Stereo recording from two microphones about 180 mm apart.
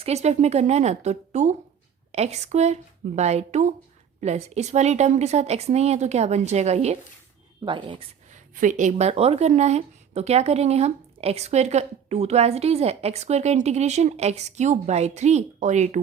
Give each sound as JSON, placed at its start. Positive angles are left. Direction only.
{"t": 0.0, "sound": "speech", "side_deg": -35}
{"t": 7.6, "sound": "speech", "side_deg": -25}
{"t": 8.3, "sound": "speech", "side_deg": -40}